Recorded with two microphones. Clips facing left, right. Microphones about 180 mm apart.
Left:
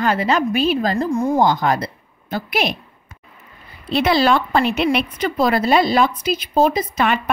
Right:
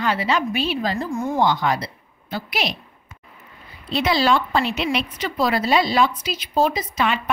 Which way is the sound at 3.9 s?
60° left (ahead or behind).